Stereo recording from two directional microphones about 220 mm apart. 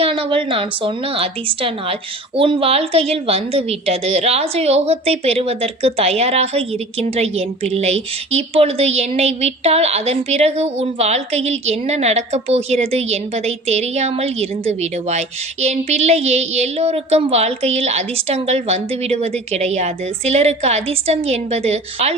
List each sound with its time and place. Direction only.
0.0 s a woman's voice: 25° right (ahead or behind)